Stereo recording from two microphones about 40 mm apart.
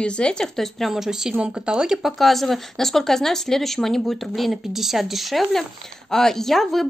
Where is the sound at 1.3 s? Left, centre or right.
Right.